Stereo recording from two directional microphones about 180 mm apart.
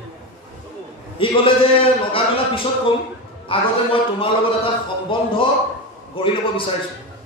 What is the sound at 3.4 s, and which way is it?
A man's voice, 30° left (ahead or behind).